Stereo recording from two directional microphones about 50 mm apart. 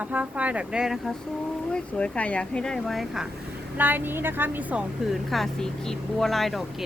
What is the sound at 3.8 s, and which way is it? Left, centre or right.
Speech, right.